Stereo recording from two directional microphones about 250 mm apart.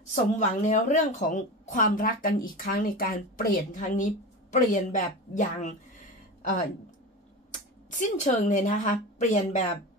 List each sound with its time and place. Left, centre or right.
0.1 s a woman's voice: left
7.9 s a woman's voice: left